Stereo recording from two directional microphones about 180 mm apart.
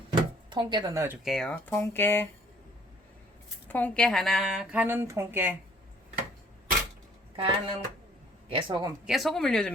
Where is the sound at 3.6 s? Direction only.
10° left (ahead or behind); by 5.5 s 10° right (ahead or behind).